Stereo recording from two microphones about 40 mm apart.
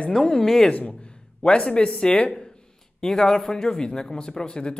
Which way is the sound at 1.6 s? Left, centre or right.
Left.